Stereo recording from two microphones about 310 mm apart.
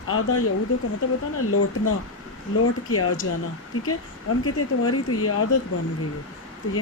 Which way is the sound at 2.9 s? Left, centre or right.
Left.